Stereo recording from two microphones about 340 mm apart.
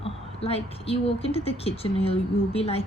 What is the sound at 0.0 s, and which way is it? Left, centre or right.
A woman's voice, centre.